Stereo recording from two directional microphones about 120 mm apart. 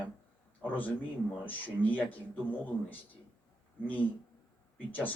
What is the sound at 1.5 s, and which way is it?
Speech, 15° left (ahead or behind).